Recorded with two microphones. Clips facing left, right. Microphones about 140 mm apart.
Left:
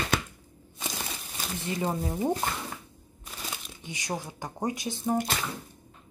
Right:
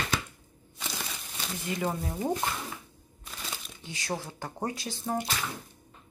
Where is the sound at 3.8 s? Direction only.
20° left (ahead or behind).